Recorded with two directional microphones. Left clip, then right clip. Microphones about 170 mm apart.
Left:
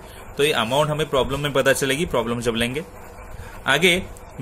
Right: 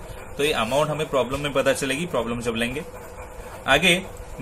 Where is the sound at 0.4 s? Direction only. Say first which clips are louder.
Left 2 dB; 50° left (ahead or behind).